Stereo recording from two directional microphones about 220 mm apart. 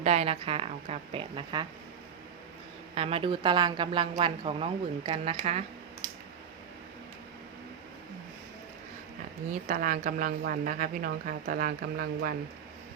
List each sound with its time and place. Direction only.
0.0 s a woman's voice: 30° right (ahead or behind)
2.9 s a woman's voice: 25° right (ahead or behind)
9.5 s speech: 40° right (ahead or behind)